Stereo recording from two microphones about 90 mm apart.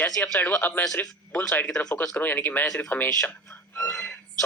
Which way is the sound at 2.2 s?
20° left (ahead or behind).